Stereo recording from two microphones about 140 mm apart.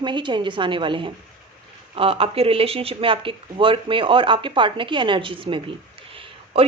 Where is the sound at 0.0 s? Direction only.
35° right (ahead or behind).